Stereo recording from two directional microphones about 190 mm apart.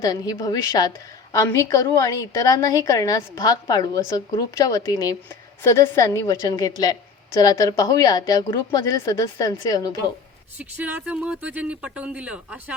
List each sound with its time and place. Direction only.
0.0 s a woman's voice: 20° left (ahead or behind)
10.6 s speech: 10° right (ahead or behind)